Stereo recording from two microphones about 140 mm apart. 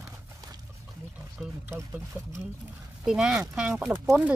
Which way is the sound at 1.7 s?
20° right (ahead or behind).